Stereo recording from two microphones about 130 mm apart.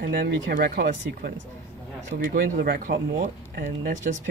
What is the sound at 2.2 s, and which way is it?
Speech, 90° right.